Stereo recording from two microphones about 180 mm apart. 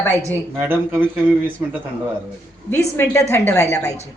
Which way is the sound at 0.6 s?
10° right (ahead or behind).